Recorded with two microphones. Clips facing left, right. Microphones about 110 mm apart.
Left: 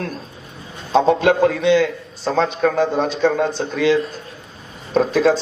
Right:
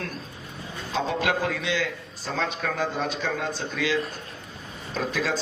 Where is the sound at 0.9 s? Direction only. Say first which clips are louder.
Left 11 dB; 30° left (ahead or behind).